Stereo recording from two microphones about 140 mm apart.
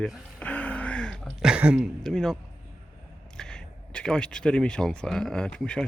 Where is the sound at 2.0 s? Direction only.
5° left (ahead or behind).